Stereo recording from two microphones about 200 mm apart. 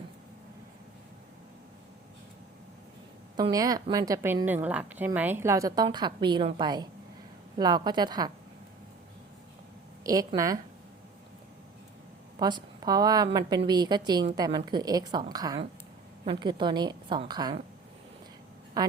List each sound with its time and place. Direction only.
3.3 s a woman's voice: 20° right (ahead or behind)
10.0 s speech: 15° right (ahead or behind)
12.4 s a woman's voice: 20° right (ahead or behind)
18.8 s a woman's voice: 20° right (ahead or behind)